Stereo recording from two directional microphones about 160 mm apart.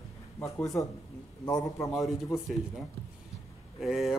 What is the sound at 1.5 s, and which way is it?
Speech, 25° left (ahead or behind).